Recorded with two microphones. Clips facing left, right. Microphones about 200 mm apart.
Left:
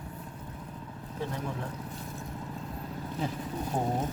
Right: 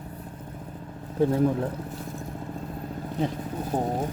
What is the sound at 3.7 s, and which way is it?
Speech, 20° right (ahead or behind).